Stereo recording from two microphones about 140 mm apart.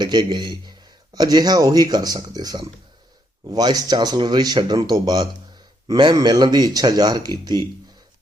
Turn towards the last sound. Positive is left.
turn(degrees=-30)  # may be behind; listen again after turning